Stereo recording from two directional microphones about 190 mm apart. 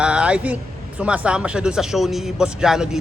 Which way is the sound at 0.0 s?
5° right (ahead or behind).